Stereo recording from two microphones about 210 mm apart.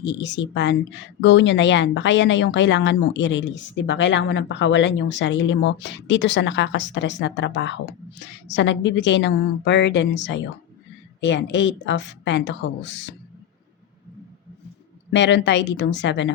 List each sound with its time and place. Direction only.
0.0 s speech: 55° left (ahead or behind)
15.1 s speech: 60° left (ahead or behind)